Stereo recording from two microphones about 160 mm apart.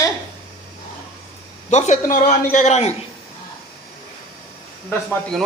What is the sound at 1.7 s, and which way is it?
Speech, 45° left (ahead or behind).